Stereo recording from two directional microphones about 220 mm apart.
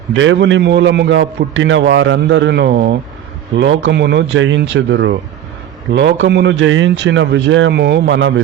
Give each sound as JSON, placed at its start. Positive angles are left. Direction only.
{"t": 0.1, "sound": "a man's voice", "side_deg": -60}